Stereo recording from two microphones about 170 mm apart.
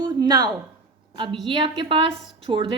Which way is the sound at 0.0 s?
25° right (ahead or behind).